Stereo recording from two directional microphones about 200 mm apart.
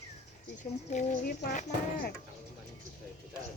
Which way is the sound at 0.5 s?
40° left (ahead or behind).